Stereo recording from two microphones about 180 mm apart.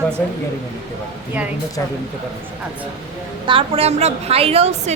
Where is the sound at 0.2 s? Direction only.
10° left (ahead or behind).